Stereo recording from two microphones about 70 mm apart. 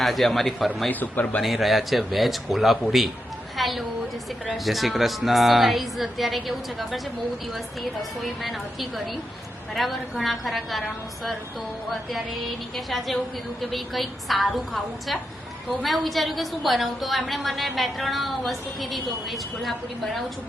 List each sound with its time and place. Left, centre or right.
0.0 s a woman's voice: centre
0.9 s speech: left
1.4 s a woman's voice: centre
11.9 s a woman's voice: centre